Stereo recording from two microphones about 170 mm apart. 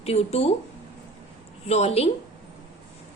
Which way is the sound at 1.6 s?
40° left (ahead or behind).